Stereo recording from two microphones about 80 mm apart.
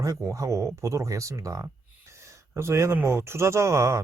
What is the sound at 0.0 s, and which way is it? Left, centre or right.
Speech, right.